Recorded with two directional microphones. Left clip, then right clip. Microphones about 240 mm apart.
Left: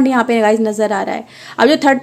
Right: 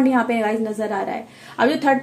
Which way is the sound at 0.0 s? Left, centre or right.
Left.